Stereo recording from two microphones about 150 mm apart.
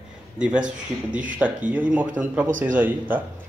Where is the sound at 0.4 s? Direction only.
5° right (ahead or behind).